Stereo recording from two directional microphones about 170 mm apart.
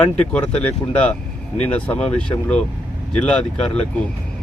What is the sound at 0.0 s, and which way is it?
Speech, 5° left (ahead or behind).